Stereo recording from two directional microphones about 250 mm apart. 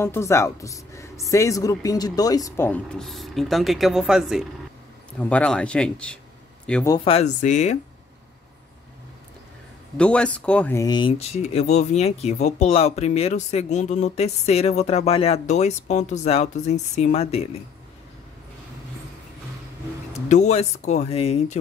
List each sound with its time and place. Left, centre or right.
0.0 s a woman's voice: centre
7.1 s speech: left
9.9 s speech: centre; by 17.5 s left
20.1 s speech: left